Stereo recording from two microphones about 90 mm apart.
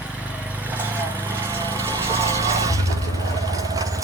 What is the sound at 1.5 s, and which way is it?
Vehicle, 35° right (ahead or behind).